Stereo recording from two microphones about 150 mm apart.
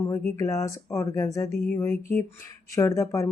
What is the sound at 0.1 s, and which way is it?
Speech, 20° left (ahead or behind).